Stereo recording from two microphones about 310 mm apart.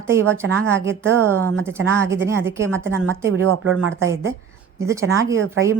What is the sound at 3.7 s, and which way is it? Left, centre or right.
A woman's voice, centre.